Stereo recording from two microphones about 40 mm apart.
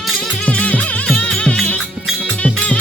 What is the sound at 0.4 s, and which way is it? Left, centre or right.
Music, left.